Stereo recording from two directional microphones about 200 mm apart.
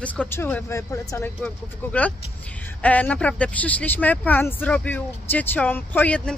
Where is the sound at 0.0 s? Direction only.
10° left (ahead or behind).